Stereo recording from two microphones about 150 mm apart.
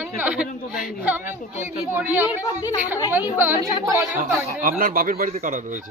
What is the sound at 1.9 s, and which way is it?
A woman's voice, 15° right (ahead or behind).